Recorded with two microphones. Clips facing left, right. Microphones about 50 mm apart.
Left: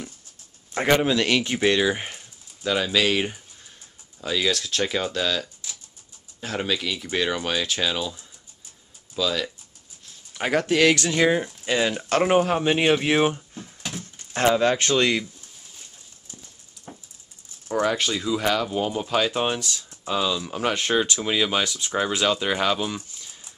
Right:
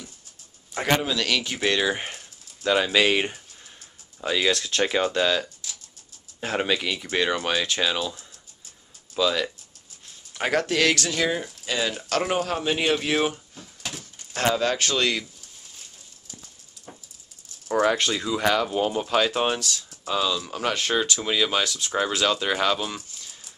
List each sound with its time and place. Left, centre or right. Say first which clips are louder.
0.7 s speech: left 4 dB; left
1.7 s speech: left 1 dB; centre
10.3 s speech: left 2 dB; centre
17.8 s speech: left 1 dB; centre